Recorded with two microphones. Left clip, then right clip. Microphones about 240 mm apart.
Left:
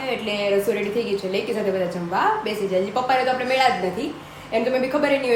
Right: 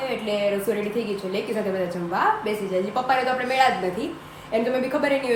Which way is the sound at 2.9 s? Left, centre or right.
Centre.